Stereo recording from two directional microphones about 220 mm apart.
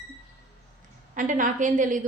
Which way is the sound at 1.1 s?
35° right (ahead or behind).